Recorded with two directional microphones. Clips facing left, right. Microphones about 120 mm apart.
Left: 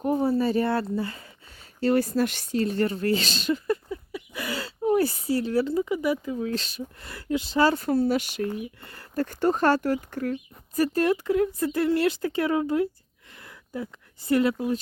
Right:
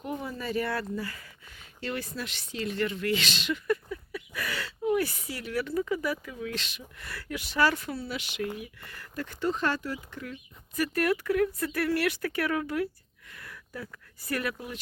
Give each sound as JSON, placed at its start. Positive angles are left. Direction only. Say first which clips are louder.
{"t": 0.0, "sound": "speech", "louder": "left 12 dB", "side_deg": 35}
{"t": 7.1, "sound": "speech", "louder": "left 9 dB", "side_deg": 25}
{"t": 7.9, "sound": "speech", "louder": "left 12 dB", "side_deg": 40}
{"t": 9.2, "sound": "speech", "louder": "left 7 dB", "side_deg": 45}
{"t": 10.8, "sound": "speech", "louder": "left 5 dB", "side_deg": 30}
{"t": 13.3, "sound": "a sound", "louder": "left 6 dB", "side_deg": 25}